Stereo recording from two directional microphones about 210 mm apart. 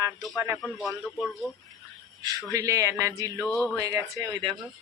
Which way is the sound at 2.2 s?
15° right (ahead or behind).